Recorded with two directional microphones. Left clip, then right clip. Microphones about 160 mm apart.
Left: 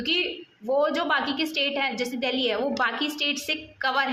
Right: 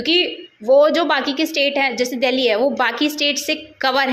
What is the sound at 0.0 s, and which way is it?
A woman's voice, 15° right (ahead or behind).